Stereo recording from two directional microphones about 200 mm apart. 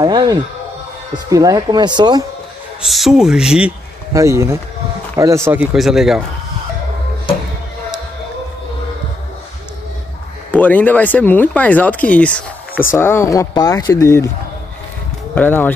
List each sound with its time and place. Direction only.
0.0 s a sound: 20° right (ahead or behind)
1.1 s speech: 20° right (ahead or behind)
2.8 s a man's voice: centre (ahead or behind)
4.1 s a man's voice: 15° right (ahead or behind)
10.5 s speech: 10° left (ahead or behind)
15.3 s speech: 10° left (ahead or behind)